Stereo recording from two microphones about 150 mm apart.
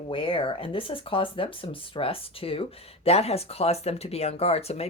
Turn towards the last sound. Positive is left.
turn(degrees=45)  # may be behind; listen again after turning